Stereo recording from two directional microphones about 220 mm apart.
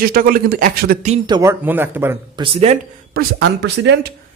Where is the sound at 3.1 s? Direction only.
45° right (ahead or behind).